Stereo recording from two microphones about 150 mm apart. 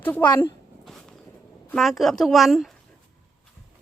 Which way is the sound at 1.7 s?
Centre (ahead or behind).